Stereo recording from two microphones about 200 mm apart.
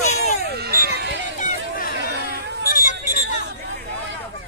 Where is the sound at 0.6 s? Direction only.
50° right (ahead or behind).